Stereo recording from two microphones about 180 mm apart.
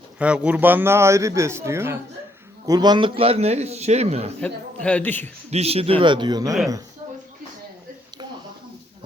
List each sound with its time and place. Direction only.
0.2 s a man's voice: 10° right (ahead or behind); by 4.3 s 35° right (ahead or behind)
4.4 s a man's voice: 5° left (ahead or behind)
5.5 s speech: 35° right (ahead or behind)